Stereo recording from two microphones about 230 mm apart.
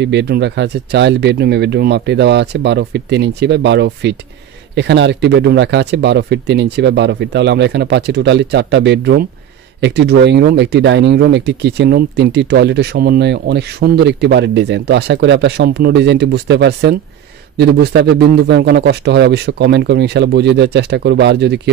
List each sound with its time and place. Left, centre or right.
0.0 s speech: right